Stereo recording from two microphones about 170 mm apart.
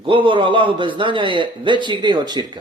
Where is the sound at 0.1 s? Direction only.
30° right (ahead or behind).